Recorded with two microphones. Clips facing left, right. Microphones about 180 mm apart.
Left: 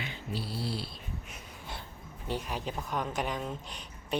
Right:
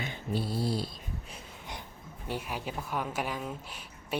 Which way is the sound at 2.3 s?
10° right (ahead or behind).